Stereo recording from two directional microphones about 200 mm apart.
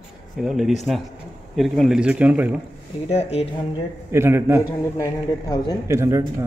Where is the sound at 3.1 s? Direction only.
30° left (ahead or behind).